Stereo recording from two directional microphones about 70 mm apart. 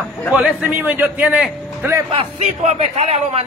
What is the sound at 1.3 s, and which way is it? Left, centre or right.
Speech, centre.